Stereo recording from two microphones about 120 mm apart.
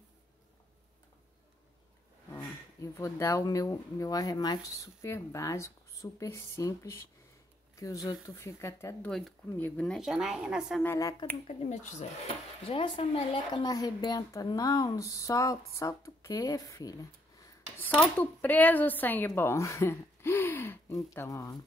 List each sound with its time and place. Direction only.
2.3 s speech: 25° left (ahead or behind)
9.0 s speech: 5° left (ahead or behind)
9.5 s speech: 20° left (ahead or behind)
9.8 s speech: 5° right (ahead or behind)
11.4 s speech: 85° left
12.6 s speech: 45° left (ahead or behind)
13.5 s speech: 35° left (ahead or behind)
17.7 s speech: 15° left (ahead or behind)